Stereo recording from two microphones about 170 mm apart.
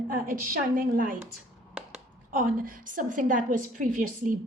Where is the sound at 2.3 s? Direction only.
55° right (ahead or behind).